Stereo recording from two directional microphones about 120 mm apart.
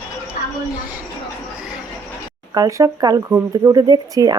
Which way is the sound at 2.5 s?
30° right (ahead or behind).